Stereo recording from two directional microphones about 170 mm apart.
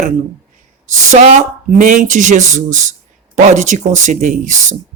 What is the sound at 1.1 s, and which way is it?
Speech, 45° right (ahead or behind).